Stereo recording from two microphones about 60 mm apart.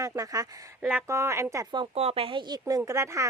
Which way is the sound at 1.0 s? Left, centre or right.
Right.